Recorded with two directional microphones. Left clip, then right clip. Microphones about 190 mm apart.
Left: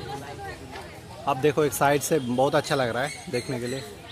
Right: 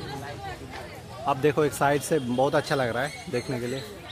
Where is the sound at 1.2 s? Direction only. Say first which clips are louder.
Left 1 dB; 10° left (ahead or behind).